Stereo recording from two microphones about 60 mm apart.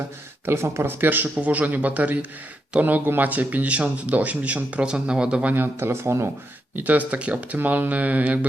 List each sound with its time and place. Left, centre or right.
0.4 s speech: right; by 5.5 s centre
5.5 s speech: right
6.7 s speech: right